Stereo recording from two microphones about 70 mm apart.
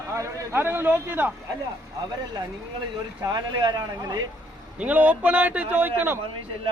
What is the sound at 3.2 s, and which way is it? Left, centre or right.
Speech, right.